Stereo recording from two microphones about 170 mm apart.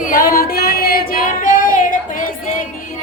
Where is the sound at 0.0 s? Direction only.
55° left (ahead or behind).